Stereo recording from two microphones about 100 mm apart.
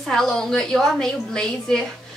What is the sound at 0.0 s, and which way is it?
A woman's voice, 5° left (ahead or behind).